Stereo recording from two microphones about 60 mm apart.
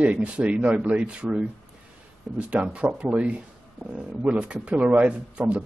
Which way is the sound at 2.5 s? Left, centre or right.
Right.